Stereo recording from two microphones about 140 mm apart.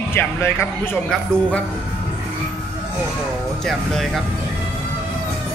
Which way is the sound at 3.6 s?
5° left (ahead or behind).